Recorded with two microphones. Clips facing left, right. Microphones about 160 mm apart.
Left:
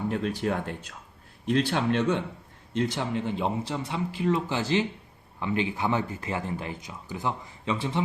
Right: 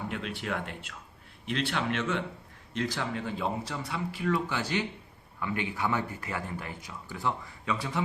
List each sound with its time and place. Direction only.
0.1 s speech: 35° left (ahead or behind)
2.7 s speech: 25° left (ahead or behind)